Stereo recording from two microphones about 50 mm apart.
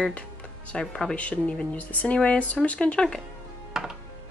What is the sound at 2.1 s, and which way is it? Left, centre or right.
Speech, left.